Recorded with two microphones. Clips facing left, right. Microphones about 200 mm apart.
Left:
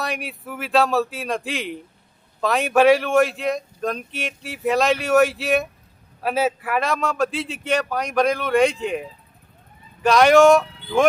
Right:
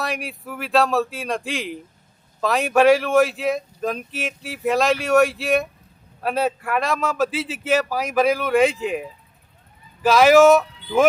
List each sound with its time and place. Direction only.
0.0 s speech: centre (ahead or behind)